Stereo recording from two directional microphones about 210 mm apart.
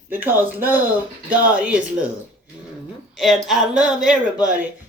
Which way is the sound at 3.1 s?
Centre (ahead or behind).